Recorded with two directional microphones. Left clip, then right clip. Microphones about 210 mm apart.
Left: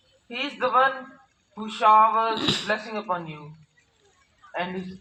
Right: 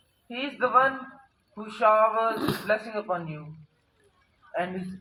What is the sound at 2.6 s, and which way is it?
Speech, 45° right (ahead or behind).